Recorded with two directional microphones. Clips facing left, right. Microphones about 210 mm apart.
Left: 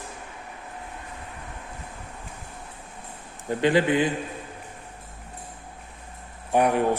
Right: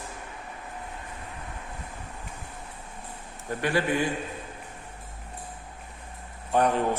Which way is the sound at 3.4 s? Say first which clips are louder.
Left 5 dB; 20° left (ahead or behind).